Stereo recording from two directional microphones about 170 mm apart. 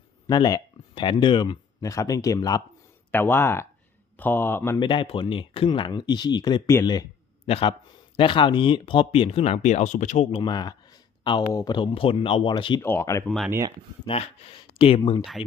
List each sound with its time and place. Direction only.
0.3 s speech: 25° left (ahead or behind)
4.7 s speech: 30° left (ahead or behind)
7.4 s a man's voice: 35° left (ahead or behind)
12.8 s speech: 15° left (ahead or behind)
13.2 s speech: centre (ahead or behind)
14.0 s speech: 35° left (ahead or behind)